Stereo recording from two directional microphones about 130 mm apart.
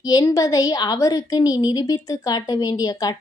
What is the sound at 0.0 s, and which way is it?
A woman's voice, 30° left (ahead or behind).